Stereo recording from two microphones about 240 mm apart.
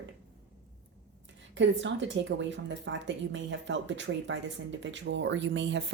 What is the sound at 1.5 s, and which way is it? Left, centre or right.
Speech, right.